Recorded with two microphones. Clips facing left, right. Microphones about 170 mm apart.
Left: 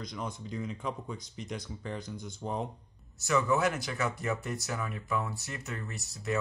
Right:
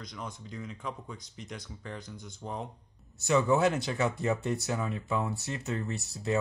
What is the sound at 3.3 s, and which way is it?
Speech, 30° right (ahead or behind).